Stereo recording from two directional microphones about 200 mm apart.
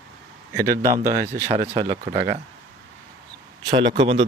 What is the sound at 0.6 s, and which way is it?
Speech, 15° right (ahead or behind).